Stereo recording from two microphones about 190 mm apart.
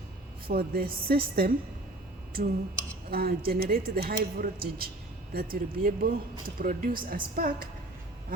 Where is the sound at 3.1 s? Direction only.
55° right (ahead or behind).